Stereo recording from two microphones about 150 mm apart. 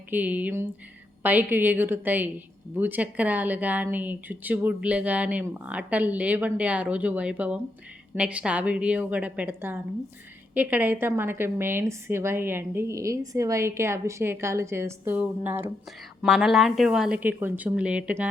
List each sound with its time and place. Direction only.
0.1 s speech: 10° right (ahead or behind)
16.2 s speech: centre (ahead or behind)